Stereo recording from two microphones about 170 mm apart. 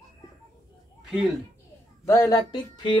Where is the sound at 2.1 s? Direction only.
20° left (ahead or behind).